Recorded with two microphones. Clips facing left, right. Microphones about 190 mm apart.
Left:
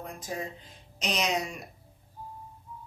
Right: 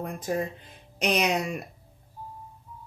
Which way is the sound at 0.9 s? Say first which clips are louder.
Right 5 dB; 60° right (ahead or behind).